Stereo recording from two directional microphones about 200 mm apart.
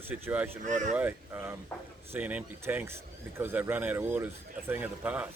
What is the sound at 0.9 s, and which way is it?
Speech, 10° right (ahead or behind).